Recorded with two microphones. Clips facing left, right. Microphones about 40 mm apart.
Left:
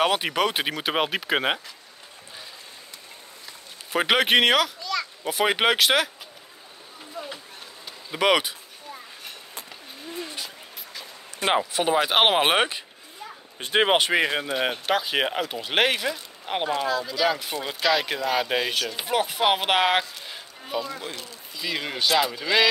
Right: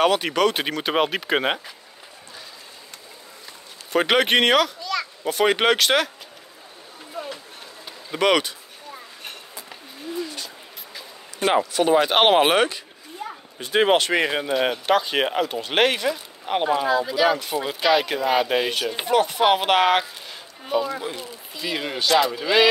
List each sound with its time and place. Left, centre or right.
0.0 s speech: centre
3.9 s speech: centre
8.1 s speech: centre
11.5 s speech: centre
12.5 s speech: left
14.2 s speech: centre
20.6 s speech: centre
22.3 s speech: centre